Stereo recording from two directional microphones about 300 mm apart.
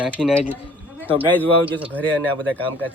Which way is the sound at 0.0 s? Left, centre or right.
Centre.